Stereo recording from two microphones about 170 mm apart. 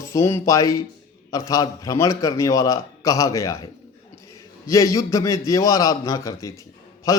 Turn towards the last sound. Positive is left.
turn(degrees=20)  # may be behind; listen again after turning